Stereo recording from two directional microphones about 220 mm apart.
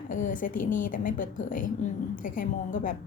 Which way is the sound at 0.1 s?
35° left (ahead or behind).